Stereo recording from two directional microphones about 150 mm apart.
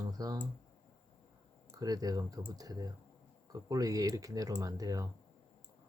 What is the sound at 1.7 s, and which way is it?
Speech, 25° right (ahead or behind).